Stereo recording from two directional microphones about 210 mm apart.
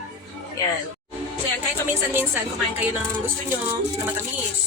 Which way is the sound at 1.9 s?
10° right (ahead or behind).